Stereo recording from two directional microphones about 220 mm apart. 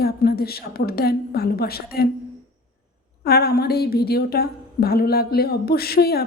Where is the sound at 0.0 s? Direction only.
45° left (ahead or behind).